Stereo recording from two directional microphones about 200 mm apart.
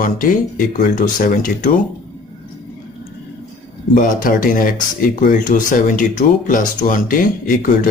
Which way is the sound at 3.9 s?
45° left (ahead or behind).